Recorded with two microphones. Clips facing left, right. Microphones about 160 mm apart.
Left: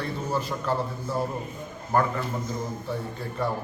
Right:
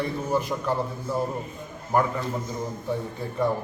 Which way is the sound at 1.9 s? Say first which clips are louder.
Right 1 dB; 15° right (ahead or behind).